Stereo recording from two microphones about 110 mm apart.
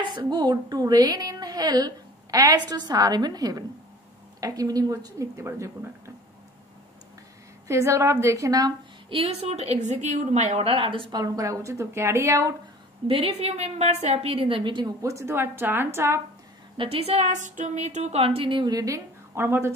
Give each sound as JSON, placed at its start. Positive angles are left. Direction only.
{"t": 0.1, "sound": "a woman's voice", "side_deg": -45}
{"t": 7.6, "sound": "speech", "side_deg": -25}
{"t": 9.1, "sound": "a woman's voice", "side_deg": -65}
{"t": 13.0, "sound": "a woman's voice", "side_deg": -60}
{"t": 15.0, "sound": "speech", "side_deg": -30}
{"t": 16.7, "sound": "a woman's voice", "side_deg": -55}
{"t": 19.3, "sound": "speech", "side_deg": -20}